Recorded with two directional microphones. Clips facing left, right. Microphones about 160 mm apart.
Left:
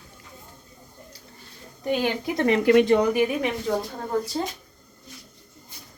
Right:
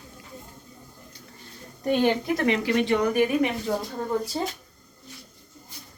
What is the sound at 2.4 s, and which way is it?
Speech, 55° left (ahead or behind).